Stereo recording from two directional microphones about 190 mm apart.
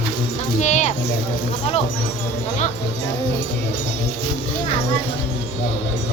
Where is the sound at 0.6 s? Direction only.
40° left (ahead or behind).